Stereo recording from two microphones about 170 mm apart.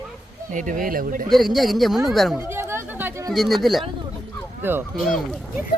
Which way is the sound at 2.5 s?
15° right (ahead or behind).